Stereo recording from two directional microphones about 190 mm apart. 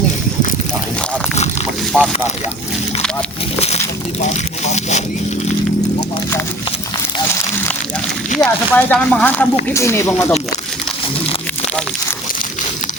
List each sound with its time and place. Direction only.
1.9 s speech: 10° right (ahead or behind)
4.6 s speech: 35° left (ahead or behind)
8.4 s speech: 10° left (ahead or behind)